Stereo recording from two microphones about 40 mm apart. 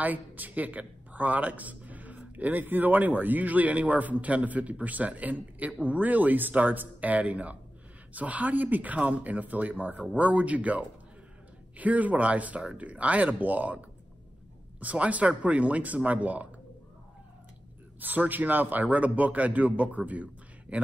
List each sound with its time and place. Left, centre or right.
0.0 s speech: right
18.0 s speech: right